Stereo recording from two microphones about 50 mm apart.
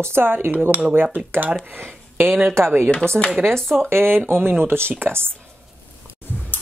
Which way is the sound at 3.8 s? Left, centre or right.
Right.